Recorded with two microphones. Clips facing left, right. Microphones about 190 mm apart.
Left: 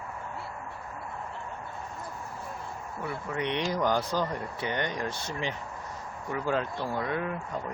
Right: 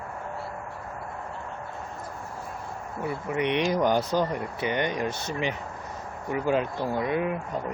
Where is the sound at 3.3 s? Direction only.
15° right (ahead or behind).